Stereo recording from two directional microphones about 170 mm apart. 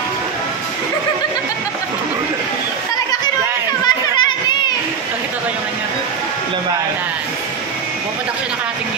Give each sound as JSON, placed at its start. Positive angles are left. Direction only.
{"t": 3.8, "sound": "children playing", "side_deg": 25}